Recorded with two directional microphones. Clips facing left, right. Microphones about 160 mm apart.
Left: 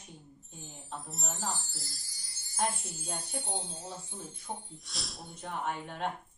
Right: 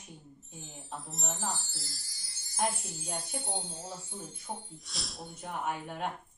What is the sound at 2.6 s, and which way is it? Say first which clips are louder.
Speech: right 1 dB; 15° right (ahead or behind).